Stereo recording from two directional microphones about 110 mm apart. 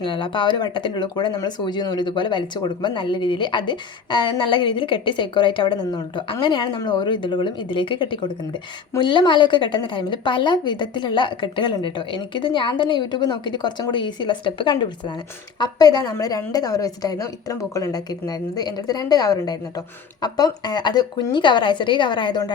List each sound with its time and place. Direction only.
0.0 s speech: 45° left (ahead or behind)